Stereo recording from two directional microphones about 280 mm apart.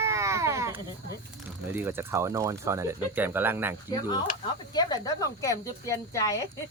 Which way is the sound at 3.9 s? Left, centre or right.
Centre.